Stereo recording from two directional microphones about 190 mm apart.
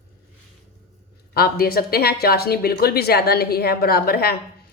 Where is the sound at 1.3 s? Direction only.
55° left (ahead or behind).